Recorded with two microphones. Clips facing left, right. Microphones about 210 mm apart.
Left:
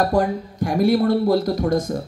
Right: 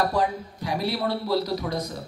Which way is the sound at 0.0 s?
50° left (ahead or behind).